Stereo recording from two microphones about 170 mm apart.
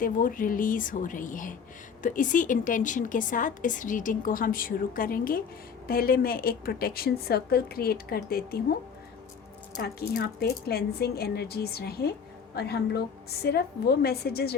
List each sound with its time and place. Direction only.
0.0 s a woman's voice: 55° left (ahead or behind)
9.7 s a woman's voice: 65° left (ahead or behind)